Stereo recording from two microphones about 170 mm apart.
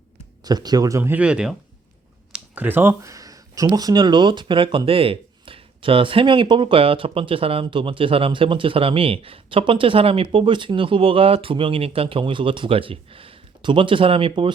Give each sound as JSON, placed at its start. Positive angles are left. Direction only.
{"t": 0.4, "sound": "speech", "side_deg": -25}